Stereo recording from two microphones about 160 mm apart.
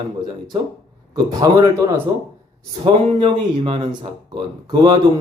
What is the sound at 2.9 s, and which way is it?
Speech, 45° right (ahead or behind).